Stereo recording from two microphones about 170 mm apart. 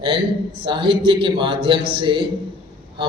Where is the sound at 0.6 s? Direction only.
30° right (ahead or behind).